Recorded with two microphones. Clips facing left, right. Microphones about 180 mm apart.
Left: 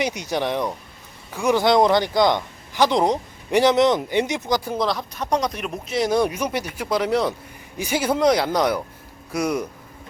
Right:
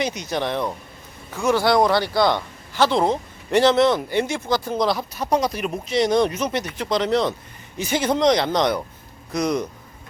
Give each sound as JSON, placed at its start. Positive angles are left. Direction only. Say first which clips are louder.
{"t": 0.0, "sound": "speech", "louder": "left 1 dB", "side_deg": 15}
{"t": 4.9, "sound": "speech", "louder": "right 2 dB", "side_deg": -5}